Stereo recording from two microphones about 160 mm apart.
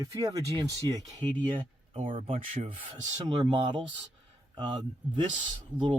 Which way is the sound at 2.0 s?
45° right (ahead or behind).